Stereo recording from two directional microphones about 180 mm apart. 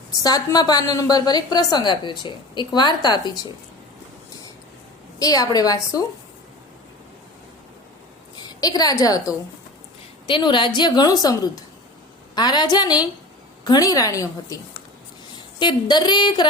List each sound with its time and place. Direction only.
0.2 s a woman's voice: 20° left (ahead or behind)
5.2 s a woman's voice: 20° left (ahead or behind)
8.4 s a woman's voice: 20° left (ahead or behind)